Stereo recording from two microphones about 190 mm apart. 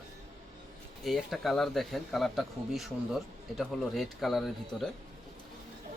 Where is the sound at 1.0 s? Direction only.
Centre (ahead or behind).